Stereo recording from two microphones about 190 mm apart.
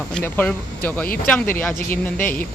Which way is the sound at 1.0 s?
50° left (ahead or behind).